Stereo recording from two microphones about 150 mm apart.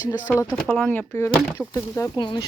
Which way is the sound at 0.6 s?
10° left (ahead or behind).